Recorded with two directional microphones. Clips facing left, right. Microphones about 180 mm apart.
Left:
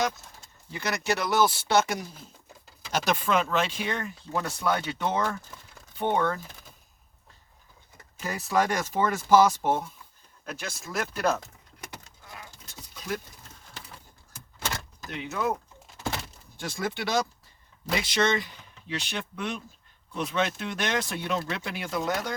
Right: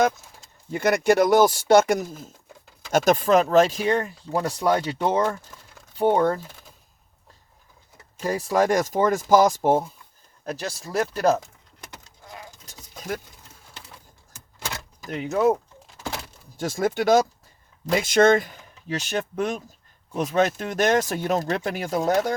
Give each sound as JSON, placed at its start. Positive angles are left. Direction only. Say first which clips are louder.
{"t": 0.7, "sound": "speech", "louder": "right 10 dB", "side_deg": -50}
{"t": 8.2, "sound": "speech", "louder": "right 5 dB", "side_deg": -40}
{"t": 12.6, "sound": "vehicle", "louder": "right 3 dB", "side_deg": -45}
{"t": 15.1, "sound": "speech", "louder": "right 9 dB", "side_deg": -40}
{"t": 16.6, "sound": "speech", "louder": "right 8 dB", "side_deg": -45}